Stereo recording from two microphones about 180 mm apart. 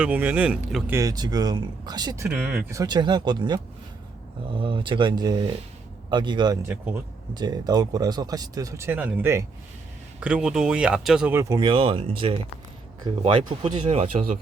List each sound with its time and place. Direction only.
0.0 s speech: 10° right (ahead or behind)
0.9 s speech: 20° right (ahead or behind)